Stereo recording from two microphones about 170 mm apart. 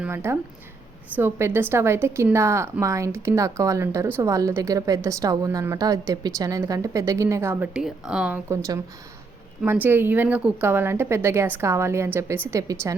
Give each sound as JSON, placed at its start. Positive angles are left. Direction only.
{"t": 0.0, "sound": "a woman's voice", "side_deg": -15}
{"t": 8.4, "sound": "a woman's voice", "side_deg": -20}